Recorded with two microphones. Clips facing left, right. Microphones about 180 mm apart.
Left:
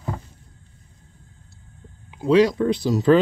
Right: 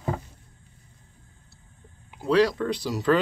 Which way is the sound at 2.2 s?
20° left (ahead or behind).